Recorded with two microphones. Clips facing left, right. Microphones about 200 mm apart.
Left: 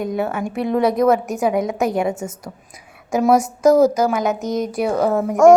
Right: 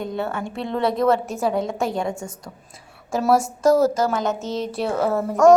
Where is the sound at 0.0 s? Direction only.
10° left (ahead or behind).